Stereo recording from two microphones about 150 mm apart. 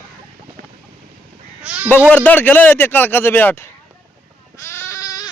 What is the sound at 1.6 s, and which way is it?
Speech, 10° right (ahead or behind).